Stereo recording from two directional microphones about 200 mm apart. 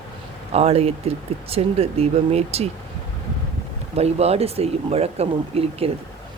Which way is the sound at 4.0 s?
30° right (ahead or behind).